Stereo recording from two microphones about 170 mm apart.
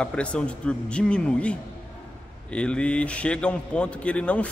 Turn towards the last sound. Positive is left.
turn(degrees=5)  # may be behind; listen again after turning